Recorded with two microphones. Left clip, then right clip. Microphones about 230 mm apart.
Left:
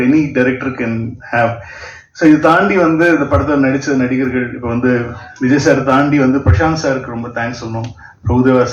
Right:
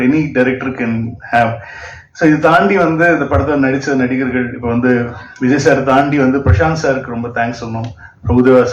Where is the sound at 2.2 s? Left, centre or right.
Right.